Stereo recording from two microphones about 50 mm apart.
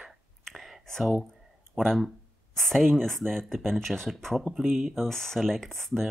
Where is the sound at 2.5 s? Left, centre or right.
Centre.